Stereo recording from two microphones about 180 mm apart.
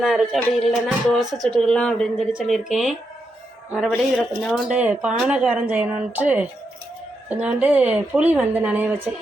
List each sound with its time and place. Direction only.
0.0 s speech: 5° right (ahead or behind)